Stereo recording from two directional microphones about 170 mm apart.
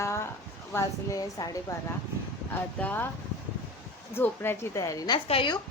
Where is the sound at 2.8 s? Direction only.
10° left (ahead or behind).